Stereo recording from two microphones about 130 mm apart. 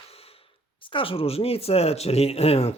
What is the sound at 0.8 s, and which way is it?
Speech, 40° left (ahead or behind).